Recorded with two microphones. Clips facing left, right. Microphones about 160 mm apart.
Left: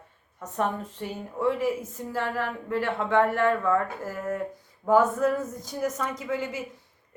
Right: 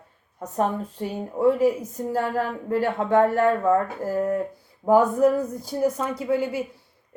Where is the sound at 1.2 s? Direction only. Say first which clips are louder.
Right 7 dB; 40° right (ahead or behind).